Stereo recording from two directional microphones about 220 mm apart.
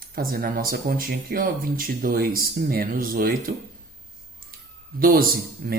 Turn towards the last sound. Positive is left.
turn(degrees=-40)  # may be behind; listen again after turning